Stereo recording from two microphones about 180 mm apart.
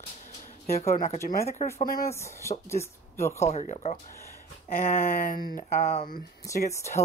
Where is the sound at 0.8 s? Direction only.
35° left (ahead or behind).